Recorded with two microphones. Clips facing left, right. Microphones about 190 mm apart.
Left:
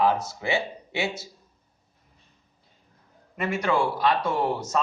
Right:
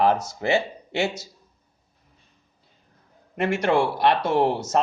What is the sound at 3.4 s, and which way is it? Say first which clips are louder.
Speech: right 4 dB; 75° right (ahead or behind).